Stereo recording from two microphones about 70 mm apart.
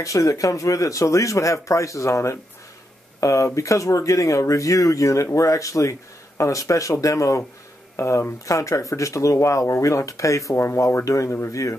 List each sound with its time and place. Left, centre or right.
0.0 s speech: left